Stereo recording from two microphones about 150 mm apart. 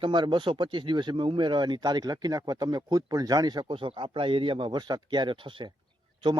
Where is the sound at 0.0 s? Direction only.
30° right (ahead or behind).